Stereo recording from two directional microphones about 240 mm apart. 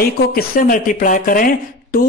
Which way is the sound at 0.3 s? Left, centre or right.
Left.